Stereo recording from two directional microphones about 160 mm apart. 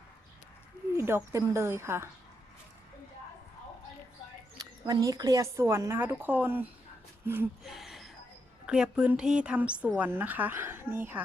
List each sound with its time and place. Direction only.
0.9 s a woman's voice: 15° right (ahead or behind)
4.5 s a woman's voice: 20° right (ahead or behind)
7.6 s a sound: centre (ahead or behind)
8.6 s a woman's voice: 5° right (ahead or behind)